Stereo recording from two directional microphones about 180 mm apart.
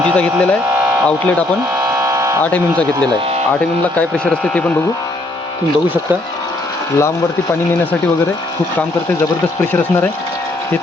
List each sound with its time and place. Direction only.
1.0 s speech: 5° left (ahead or behind)
1.8 s electric shaver: 15° right (ahead or behind)
2.4 s speech: 5° left (ahead or behind)
9.6 s speech: 10° left (ahead or behind)